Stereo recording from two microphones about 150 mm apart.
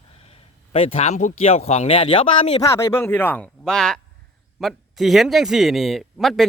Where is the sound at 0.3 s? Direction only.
40° left (ahead or behind).